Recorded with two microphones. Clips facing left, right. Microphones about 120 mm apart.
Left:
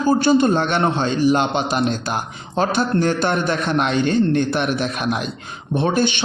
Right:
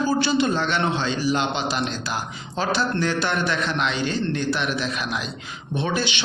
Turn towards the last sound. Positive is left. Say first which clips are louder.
# left 6 dB
turn(degrees=50)  # may be behind; listen again after turning